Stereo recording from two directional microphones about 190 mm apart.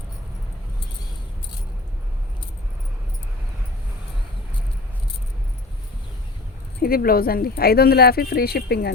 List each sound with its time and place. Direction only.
6.8 s speech: 50° left (ahead or behind)